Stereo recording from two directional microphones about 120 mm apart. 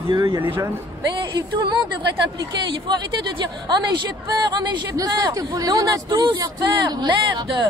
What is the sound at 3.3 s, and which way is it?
A woman's voice, 40° right (ahead or behind).